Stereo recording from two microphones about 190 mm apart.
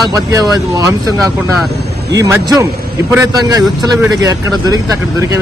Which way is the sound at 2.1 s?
20° right (ahead or behind).